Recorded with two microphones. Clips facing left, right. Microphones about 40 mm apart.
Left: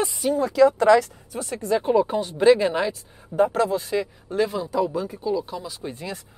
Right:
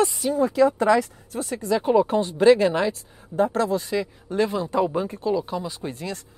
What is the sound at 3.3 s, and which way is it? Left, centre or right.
Speech, left.